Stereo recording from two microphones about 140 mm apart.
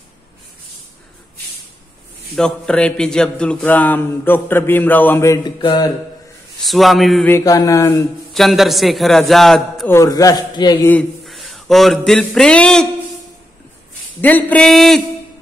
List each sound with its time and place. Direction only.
2.3 s a man's voice: 5° left (ahead or behind); by 5.5 s 20° left (ahead or behind)
5.6 s mantra: 35° left (ahead or behind)
6.6 s a man's voice: centre (ahead or behind)
7.2 s a man's voice: 20° left (ahead or behind)
8.3 s a man's voice: centre (ahead or behind)
9.8 s a man's voice: 25° left (ahead or behind)
11.2 s speech: centre (ahead or behind)
14.2 s a man's voice: 10° left (ahead or behind)